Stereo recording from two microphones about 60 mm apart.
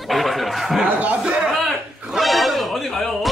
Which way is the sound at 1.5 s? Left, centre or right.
Centre.